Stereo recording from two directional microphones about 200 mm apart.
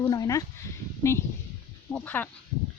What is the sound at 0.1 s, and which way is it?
Speech, 15° left (ahead or behind).